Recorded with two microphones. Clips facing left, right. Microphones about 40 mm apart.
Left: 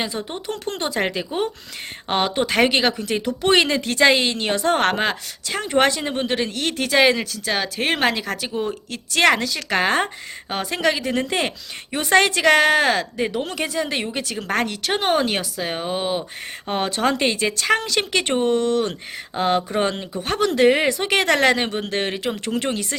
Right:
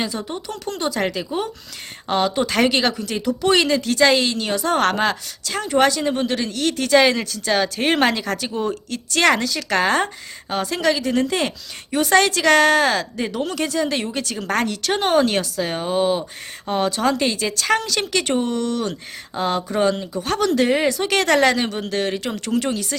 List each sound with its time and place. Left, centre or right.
0.0 s speech: left
0.4 s speech: left
2.5 s speech: centre
4.4 s a woman's voice: left; by 16.2 s centre
16.6 s speech: left
20.6 s a woman's voice: centre
21.5 s speech: left